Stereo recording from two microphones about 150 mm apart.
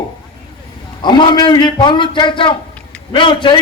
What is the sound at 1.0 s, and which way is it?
A man's voice, 30° left (ahead or behind).